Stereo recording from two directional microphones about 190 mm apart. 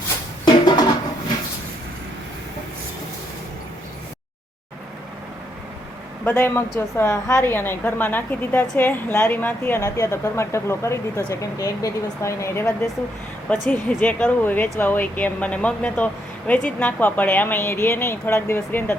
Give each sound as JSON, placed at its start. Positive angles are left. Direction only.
{"t": 0.4, "sound": "music", "side_deg": 20}
{"t": 6.2, "sound": "a woman's voice", "side_deg": 10}